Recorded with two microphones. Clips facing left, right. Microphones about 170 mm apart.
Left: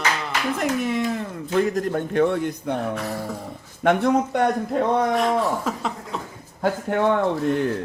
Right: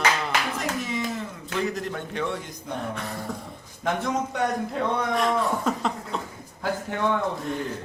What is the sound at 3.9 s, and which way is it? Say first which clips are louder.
Speech: left 8 dB; 60° left (ahead or behind).